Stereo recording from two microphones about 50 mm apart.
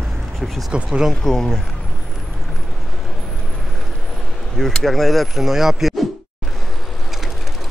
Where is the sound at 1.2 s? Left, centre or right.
Centre.